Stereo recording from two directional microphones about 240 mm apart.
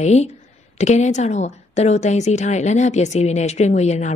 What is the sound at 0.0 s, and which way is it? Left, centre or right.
A woman's voice, left.